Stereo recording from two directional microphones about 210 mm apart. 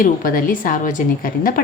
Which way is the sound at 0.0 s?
40° left (ahead or behind).